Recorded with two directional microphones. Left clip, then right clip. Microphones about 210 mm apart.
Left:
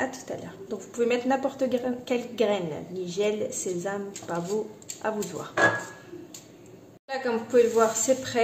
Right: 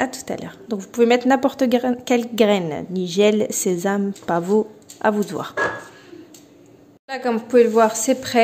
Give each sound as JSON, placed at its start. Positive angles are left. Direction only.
{"t": 0.0, "sound": "a woman's voice", "side_deg": -50}
{"t": 7.1, "sound": "a woman's voice", "side_deg": -40}